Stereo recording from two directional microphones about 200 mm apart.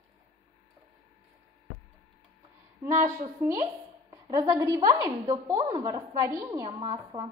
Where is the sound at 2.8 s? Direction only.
15° right (ahead or behind).